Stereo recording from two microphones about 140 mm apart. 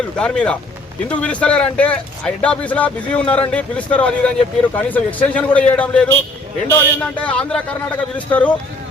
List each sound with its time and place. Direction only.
0.2 s speech: 5° left (ahead or behind)